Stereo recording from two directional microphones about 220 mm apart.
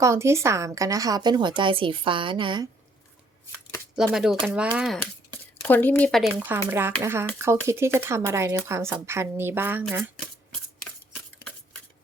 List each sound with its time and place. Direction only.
0.0 s a woman's voice: 10° right (ahead or behind)
3.9 s speech: centre (ahead or behind)
5.6 s a woman's voice: 10° left (ahead or behind); by 9.8 s 10° right (ahead or behind)